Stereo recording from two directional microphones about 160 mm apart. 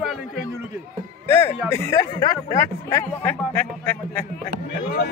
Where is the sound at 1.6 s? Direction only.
20° left (ahead or behind).